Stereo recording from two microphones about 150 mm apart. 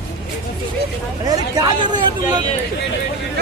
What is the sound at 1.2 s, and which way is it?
Speech, 25° right (ahead or behind).